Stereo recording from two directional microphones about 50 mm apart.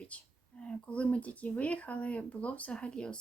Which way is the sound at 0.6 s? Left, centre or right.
Left.